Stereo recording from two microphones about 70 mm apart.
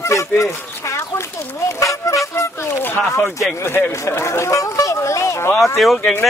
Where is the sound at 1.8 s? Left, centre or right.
Left.